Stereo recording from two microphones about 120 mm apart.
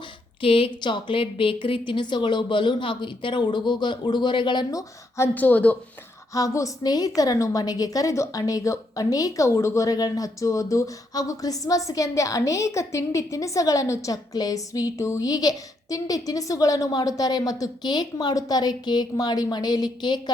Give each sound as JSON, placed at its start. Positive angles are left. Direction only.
{"t": 0.4, "sound": "a woman's voice", "side_deg": 50}
{"t": 6.3, "sound": "a woman's voice", "side_deg": 25}